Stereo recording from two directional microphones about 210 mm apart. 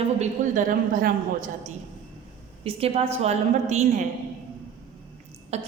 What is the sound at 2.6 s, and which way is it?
A woman's voice, 30° right (ahead or behind).